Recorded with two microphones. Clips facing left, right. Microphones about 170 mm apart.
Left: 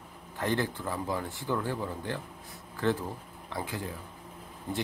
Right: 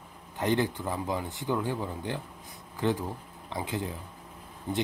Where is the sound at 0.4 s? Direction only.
20° right (ahead or behind).